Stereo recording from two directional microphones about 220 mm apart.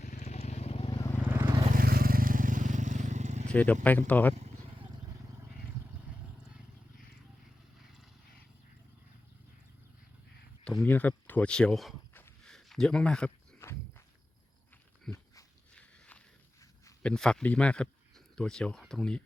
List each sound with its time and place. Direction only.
0.0 s vehicle: 30° left (ahead or behind); by 1.2 s 15° left (ahead or behind)
1.2 s vehicle: 10° right (ahead or behind)
1.7 s vehicle: 40° right (ahead or behind)
3.5 s speech: 5° left (ahead or behind)
4.4 s a sound: 30° right (ahead or behind)
10.6 s a sound: 5° left (ahead or behind)
15.1 s dog: 10° left (ahead or behind)
16.8 s a man's voice: 5° left (ahead or behind)